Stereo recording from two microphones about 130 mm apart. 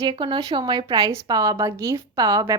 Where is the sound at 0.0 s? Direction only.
35° right (ahead or behind).